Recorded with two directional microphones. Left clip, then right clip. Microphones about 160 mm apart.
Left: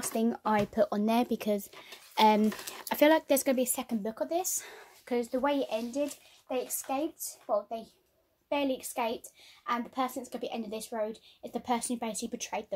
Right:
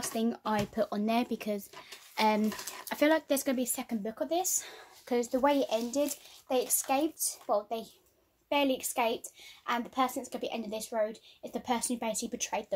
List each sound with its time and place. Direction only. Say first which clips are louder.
0.0 s speech: left 2 dB; 25° left (ahead or behind)
5.1 s a woman's voice: right 2 dB; 10° left (ahead or behind)